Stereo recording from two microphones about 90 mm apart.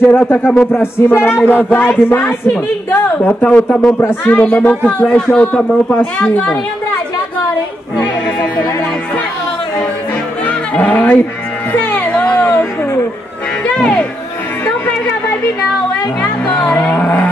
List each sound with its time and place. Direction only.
0.1 s speech: 20° left (ahead or behind)
4.4 s speech: 15° left (ahead or behind)
10.4 s music: 15° left (ahead or behind)
13.7 s speech: 10° left (ahead or behind)
16.2 s speech: 15° left (ahead or behind)